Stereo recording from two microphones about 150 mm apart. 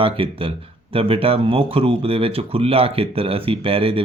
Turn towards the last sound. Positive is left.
turn(degrees=-40)  # may be behind; listen again after turning